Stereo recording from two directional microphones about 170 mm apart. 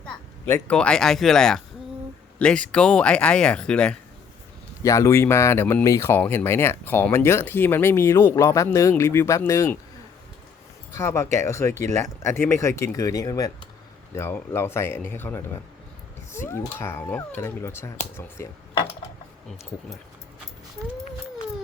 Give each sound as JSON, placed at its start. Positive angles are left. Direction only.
{"t": 0.0, "sound": "speech", "side_deg": 10}
{"t": 4.8, "sound": "speech", "side_deg": 20}
{"t": 10.9, "sound": "speech", "side_deg": 15}